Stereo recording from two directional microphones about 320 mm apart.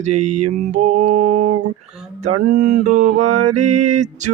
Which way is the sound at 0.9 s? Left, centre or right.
Right.